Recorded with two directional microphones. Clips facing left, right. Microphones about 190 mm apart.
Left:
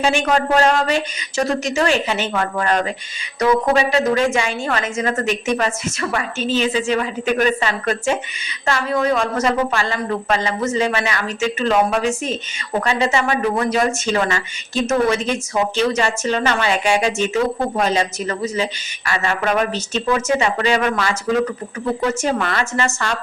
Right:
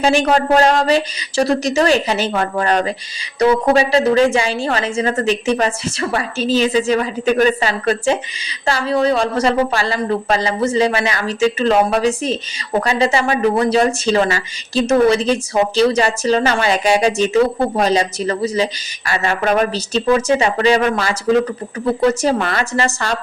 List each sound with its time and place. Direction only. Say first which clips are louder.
0.0 s a woman's voice: right 3 dB; 35° right (ahead or behind)